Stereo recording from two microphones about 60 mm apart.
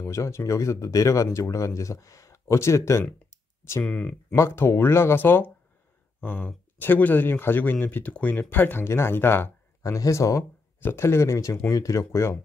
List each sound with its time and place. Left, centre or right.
0.0 s speech: left
3.3 s clicking: left
3.8 s speech: centre
4.4 s speech: left
9.8 s speech: left
10.8 s speech: left